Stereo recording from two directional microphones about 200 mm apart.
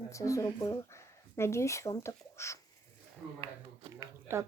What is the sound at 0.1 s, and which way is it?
Speech, 15° left (ahead or behind).